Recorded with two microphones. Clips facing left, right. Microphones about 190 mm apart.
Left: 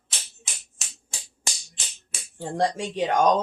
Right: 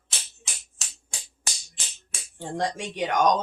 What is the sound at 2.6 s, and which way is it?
Speech, 30° left (ahead or behind).